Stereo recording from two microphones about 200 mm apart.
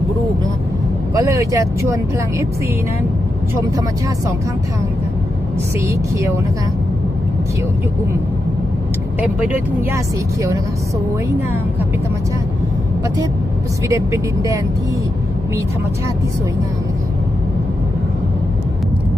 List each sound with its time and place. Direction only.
1.1 s speech: 15° right (ahead or behind)
3.5 s speech: 15° right (ahead or behind)
5.8 s speech: 15° right (ahead or behind)
13.8 s speech: 15° right (ahead or behind)